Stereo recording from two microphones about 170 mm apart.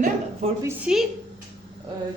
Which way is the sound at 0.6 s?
15° right (ahead or behind).